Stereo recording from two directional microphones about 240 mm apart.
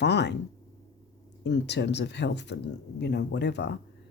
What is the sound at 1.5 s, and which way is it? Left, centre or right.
Speech, left.